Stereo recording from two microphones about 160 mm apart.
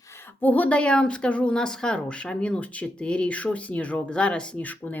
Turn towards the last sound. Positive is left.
turn(degrees=10)  # may be behind; listen again after turning